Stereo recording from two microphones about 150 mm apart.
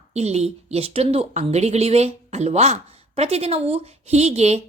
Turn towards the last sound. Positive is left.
turn(degrees=-45)  # may be behind; listen again after turning